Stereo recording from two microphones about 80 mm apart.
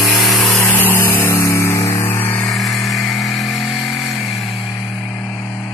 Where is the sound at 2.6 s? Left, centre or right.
Centre.